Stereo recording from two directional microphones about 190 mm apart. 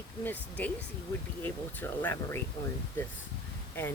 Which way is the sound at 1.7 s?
10° left (ahead or behind).